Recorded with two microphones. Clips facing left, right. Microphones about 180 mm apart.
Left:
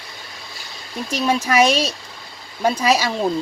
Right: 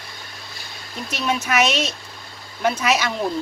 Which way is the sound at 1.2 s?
35° left (ahead or behind).